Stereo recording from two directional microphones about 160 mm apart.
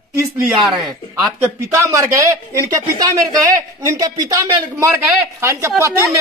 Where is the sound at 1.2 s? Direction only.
20° right (ahead or behind).